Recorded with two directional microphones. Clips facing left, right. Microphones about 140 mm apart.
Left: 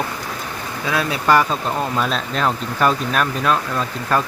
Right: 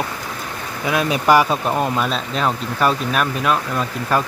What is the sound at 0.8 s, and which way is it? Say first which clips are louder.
Speech: right 3 dB; 20° right (ahead or behind).